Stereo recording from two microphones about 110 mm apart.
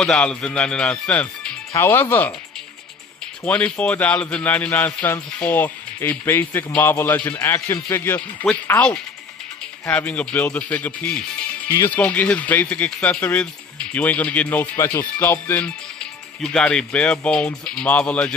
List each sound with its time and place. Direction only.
0.0 s a man's voice: 10° left (ahead or behind)
1.7 s speech: 20° left (ahead or behind)
3.4 s a man's voice: 10° left (ahead or behind)